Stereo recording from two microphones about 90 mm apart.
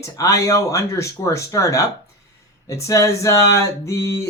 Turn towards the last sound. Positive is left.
turn(degrees=35)  # may be behind; listen again after turning